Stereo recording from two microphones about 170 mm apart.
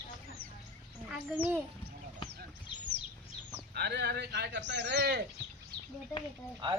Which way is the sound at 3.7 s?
75° right (ahead or behind).